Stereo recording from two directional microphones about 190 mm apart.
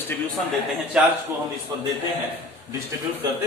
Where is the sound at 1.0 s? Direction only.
5° right (ahead or behind).